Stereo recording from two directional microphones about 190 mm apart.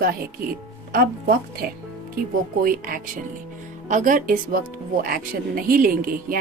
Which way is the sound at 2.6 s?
50° right (ahead or behind).